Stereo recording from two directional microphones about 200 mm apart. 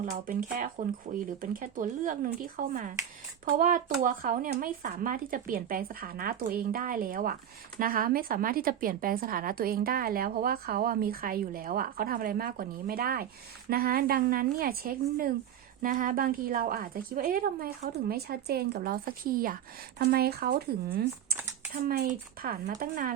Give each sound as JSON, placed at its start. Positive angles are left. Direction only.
{"t": 0.3, "sound": "a woman's voice", "side_deg": -40}